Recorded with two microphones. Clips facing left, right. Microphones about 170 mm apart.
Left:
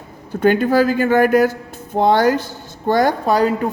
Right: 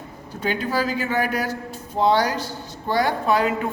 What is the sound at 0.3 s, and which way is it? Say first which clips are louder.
Speech: left 10 dB; 55° left (ahead or behind).